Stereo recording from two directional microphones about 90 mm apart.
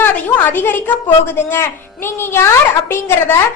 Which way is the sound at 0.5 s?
25° left (ahead or behind).